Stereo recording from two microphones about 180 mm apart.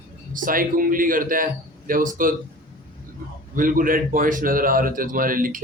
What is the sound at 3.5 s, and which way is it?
Speech, 50° right (ahead or behind).